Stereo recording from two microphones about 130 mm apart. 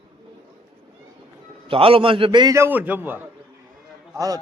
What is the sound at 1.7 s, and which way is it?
Speech, 45° right (ahead or behind).